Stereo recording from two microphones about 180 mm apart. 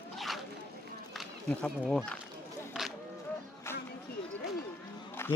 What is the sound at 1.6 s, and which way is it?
Speech, 5° left (ahead or behind).